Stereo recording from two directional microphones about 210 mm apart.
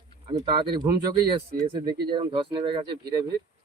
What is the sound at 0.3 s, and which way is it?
Speech, 20° right (ahead or behind).